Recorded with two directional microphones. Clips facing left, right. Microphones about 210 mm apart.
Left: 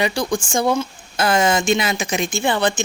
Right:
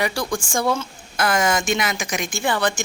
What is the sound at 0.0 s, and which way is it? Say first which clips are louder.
Speech: left 3 dB; 20° left (ahead or behind).